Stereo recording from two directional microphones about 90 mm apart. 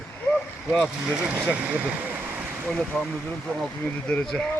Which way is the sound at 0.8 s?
10° right (ahead or behind).